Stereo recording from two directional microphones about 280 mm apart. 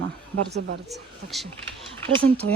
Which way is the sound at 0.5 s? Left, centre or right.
Right.